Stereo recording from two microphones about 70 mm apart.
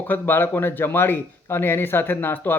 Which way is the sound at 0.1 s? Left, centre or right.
Left.